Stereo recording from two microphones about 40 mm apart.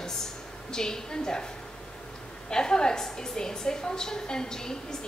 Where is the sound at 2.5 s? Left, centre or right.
Centre.